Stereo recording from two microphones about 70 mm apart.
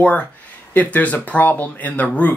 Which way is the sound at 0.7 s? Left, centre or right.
Left.